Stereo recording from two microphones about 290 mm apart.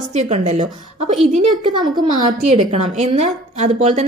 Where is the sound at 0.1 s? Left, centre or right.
Right.